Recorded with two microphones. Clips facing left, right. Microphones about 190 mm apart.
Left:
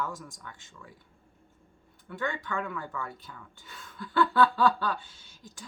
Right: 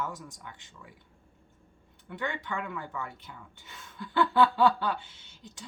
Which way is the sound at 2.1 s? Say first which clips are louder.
Left 1 dB; 20° right (ahead or behind).